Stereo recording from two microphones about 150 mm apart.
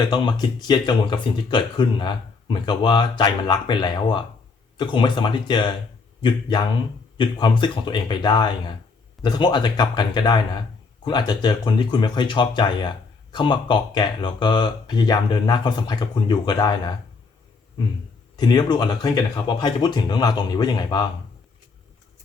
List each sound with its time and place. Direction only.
0.1 s speech: 30° left (ahead or behind)
7.2 s speech: 30° left (ahead or behind)
18.3 s speech: 30° left (ahead or behind)